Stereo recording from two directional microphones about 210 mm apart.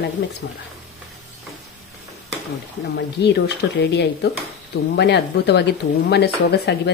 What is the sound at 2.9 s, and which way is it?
Speech, 50° left (ahead or behind).